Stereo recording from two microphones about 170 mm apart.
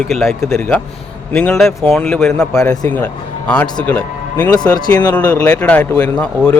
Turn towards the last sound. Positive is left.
turn(degrees=10)  # may be behind; listen again after turning